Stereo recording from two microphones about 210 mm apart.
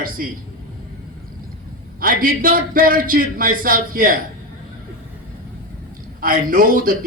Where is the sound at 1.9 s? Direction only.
40° right (ahead or behind).